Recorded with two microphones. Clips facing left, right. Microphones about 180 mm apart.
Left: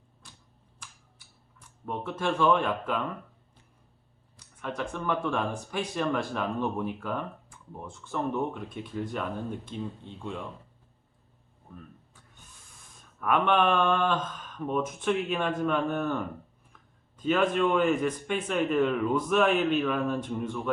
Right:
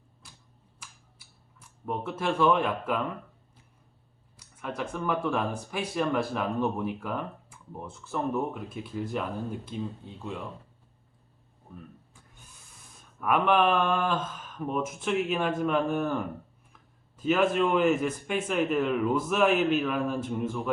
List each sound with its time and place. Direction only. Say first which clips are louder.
0.8 s a sound: even; 5° right (ahead or behind)
1.5 s speech: right 2 dB; 5° right (ahead or behind)
4.4 s speech: even; 10° right (ahead or behind)
13.1 s a man's voice: right 1 dB; 5° right (ahead or behind)